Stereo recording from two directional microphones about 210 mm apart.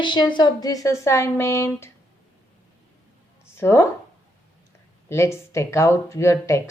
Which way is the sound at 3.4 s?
10° left (ahead or behind).